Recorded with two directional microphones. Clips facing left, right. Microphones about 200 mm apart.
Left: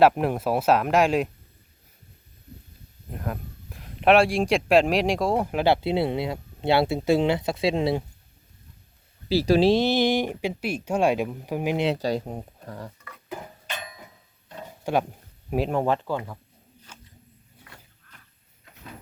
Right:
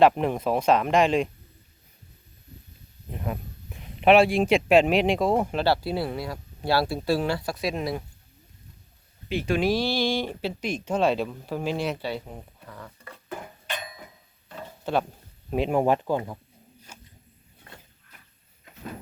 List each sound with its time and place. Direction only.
0.0 s speech: 5° left (ahead or behind)
3.1 s speech: centre (ahead or behind)
5.5 s speech: 20° left (ahead or behind)
9.3 s speech: 35° left (ahead or behind); by 11.9 s 15° left (ahead or behind)
11.9 s speech: 40° left (ahead or behind)
14.8 s speech: 10° left (ahead or behind)
15.7 s speech: 15° right (ahead or behind)